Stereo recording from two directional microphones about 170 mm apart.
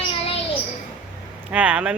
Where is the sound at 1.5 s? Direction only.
5° right (ahead or behind).